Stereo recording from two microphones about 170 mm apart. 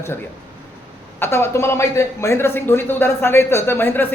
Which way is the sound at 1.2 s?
15° left (ahead or behind).